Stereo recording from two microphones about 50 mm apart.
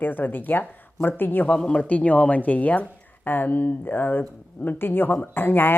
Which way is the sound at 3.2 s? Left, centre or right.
Left.